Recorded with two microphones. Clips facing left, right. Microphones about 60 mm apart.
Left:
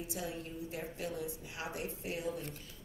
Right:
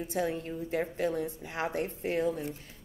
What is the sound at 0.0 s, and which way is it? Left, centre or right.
Speech, right.